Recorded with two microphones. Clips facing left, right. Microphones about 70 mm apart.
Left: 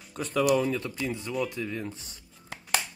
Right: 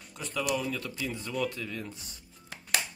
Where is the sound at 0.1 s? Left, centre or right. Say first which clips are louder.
Left 7 dB; left.